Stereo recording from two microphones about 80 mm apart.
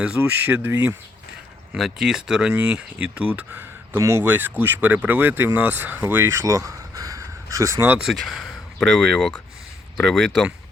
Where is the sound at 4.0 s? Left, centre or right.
Right.